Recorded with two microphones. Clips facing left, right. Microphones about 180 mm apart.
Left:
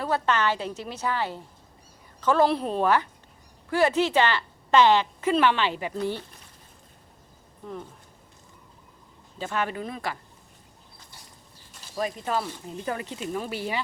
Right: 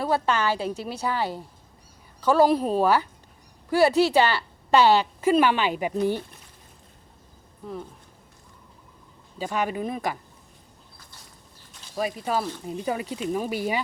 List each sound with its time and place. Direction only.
0.0 s speech: 10° right (ahead or behind)
3.8 s speech: 35° right (ahead or behind)
4.2 s a sound: 10° right (ahead or behind)
5.2 s speech: 10° right (ahead or behind)
9.4 s speech: 10° right (ahead or behind)
11.9 s speech: 10° right (ahead or behind)